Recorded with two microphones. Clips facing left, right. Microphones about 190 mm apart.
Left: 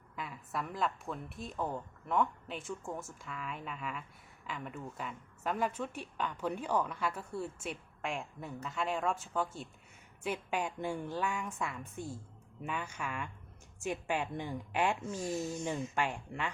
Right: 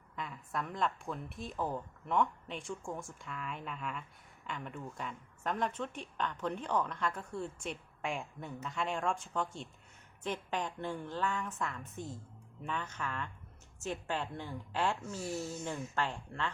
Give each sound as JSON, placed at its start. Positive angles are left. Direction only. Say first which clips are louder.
{"t": 0.2, "sound": "a woman's voice", "louder": "even", "side_deg": 5}